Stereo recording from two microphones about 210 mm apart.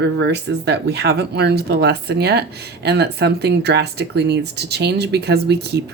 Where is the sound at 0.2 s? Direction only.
55° right (ahead or behind).